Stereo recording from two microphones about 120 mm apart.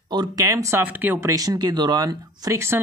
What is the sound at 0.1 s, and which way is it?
Speech, 35° right (ahead or behind).